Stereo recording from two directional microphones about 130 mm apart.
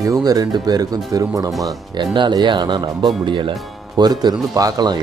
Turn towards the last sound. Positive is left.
turn(degrees=-30)  # may be behind; listen again after turning